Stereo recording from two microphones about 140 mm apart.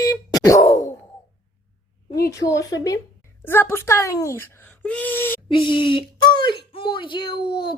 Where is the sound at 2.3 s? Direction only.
25° left (ahead or behind).